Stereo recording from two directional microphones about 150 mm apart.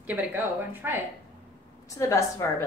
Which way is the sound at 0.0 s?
10° right (ahead or behind).